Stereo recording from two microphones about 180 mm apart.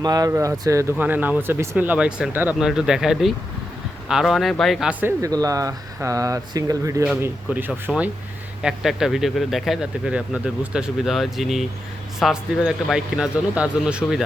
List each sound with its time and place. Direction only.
0.0 s speech: 20° right (ahead or behind); by 14.3 s 5° right (ahead or behind)